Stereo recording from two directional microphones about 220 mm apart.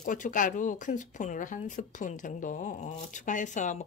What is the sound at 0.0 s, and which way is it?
Speech, 35° left (ahead or behind).